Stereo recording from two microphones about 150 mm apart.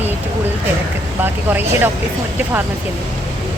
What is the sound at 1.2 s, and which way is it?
Speech, 15° right (ahead or behind).